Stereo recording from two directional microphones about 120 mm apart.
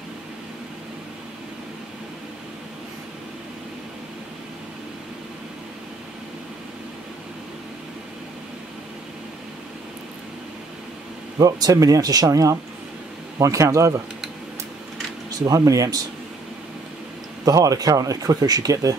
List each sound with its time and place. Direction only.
11.3 s speech: 30° right (ahead or behind)
15.3 s speech: 30° right (ahead or behind)
17.5 s speech: 30° right (ahead or behind)